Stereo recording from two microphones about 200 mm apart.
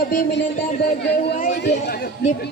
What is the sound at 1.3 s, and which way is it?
Speech, 40° left (ahead or behind).